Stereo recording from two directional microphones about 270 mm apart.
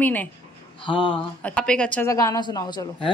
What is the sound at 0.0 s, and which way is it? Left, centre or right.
Speech, centre.